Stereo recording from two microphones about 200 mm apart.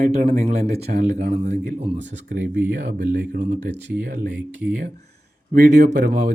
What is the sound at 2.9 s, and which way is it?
Speech, 40° right (ahead or behind).